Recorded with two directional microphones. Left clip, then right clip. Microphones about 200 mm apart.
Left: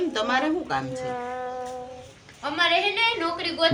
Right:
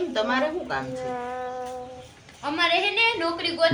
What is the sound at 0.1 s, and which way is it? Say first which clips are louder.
Speech: even; 40° left (ahead or behind).